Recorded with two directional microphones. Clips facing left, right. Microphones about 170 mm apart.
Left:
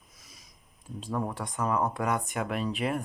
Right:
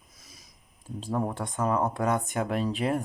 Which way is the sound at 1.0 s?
30° right (ahead or behind).